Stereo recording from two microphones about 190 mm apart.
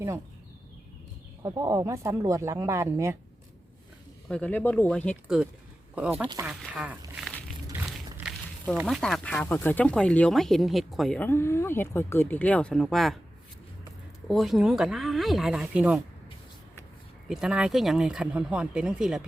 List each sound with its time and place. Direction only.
1.4 s speech: 15° right (ahead or behind)
4.3 s speech: 5° left (ahead or behind)
7.2 s a sound: centre (ahead or behind)
8.8 s speech: centre (ahead or behind)
14.3 s speech: centre (ahead or behind)
17.2 s speech: 5° right (ahead or behind)